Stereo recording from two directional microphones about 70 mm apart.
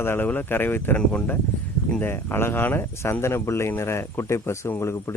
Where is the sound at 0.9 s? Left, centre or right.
Centre.